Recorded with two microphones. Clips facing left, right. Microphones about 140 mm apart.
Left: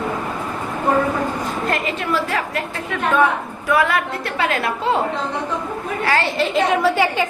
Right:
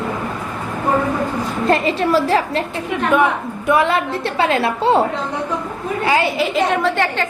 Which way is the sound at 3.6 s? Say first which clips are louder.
Right 2 dB; 25° right (ahead or behind).